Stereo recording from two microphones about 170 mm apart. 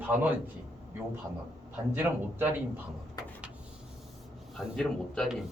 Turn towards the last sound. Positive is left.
turn(degrees=0)  # may be behind; listen again after turning